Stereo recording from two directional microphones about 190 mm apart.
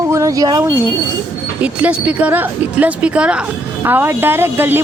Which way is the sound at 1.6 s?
5° right (ahead or behind).